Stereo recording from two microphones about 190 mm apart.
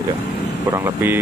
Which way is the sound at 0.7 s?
10° right (ahead or behind).